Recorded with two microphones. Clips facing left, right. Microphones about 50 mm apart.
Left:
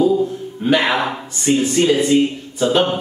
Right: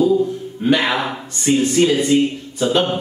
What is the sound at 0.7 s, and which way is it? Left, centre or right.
A man's voice, centre.